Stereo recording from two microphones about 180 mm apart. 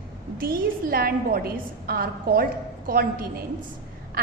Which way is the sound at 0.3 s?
55° right (ahead or behind).